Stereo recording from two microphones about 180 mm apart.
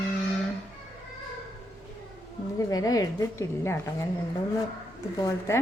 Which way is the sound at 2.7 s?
20° left (ahead or behind).